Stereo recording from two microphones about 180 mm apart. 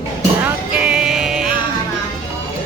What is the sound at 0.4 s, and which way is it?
Music, 5° right (ahead or behind).